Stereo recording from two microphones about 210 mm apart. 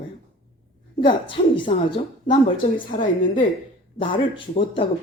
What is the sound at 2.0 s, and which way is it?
A woman's voice, 35° left (ahead or behind).